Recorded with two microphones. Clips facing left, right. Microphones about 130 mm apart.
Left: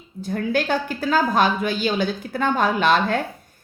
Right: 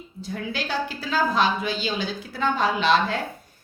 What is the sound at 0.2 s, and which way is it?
A woman's voice, 50° left (ahead or behind).